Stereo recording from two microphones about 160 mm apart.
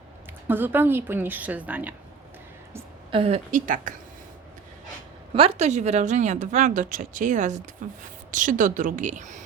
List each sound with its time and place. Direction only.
0.4 s a woman's voice: 10° right (ahead or behind)
3.1 s speech: 35° right (ahead or behind); by 3.9 s 55° right (ahead or behind)
5.3 s speech: 40° right (ahead or behind)